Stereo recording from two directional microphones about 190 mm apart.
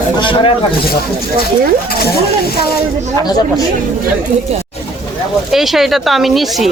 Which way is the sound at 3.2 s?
20° left (ahead or behind).